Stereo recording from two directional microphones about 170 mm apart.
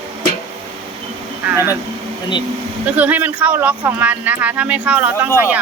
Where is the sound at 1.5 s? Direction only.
15° right (ahead or behind).